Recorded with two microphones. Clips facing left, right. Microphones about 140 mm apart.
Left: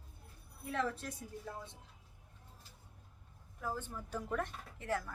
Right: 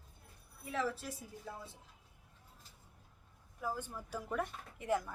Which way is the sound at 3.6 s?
10° right (ahead or behind).